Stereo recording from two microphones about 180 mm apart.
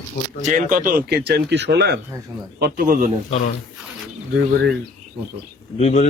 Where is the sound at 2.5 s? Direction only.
55° right (ahead or behind).